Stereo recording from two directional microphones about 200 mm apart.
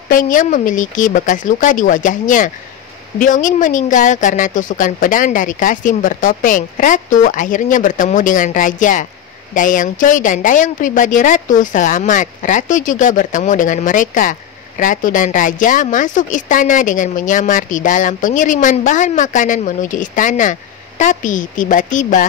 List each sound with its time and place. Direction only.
0.1 s speech: 40° left (ahead or behind)